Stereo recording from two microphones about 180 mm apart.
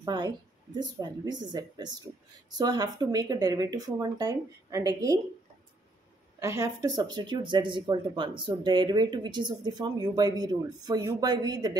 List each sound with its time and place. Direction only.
0.0 s speech: 25° right (ahead or behind)
6.4 s speech: 15° right (ahead or behind)